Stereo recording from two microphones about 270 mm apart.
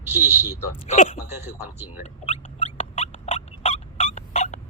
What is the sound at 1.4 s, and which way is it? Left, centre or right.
Speech, centre.